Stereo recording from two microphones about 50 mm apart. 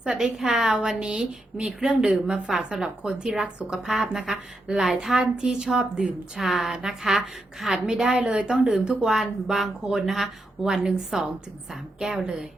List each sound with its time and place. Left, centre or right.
0.2 s a woman's voice: centre
5.0 s a woman's voice: centre
5.6 s a woman's voice: centre; by 9.0 s right
9.0 s a woman's voice: centre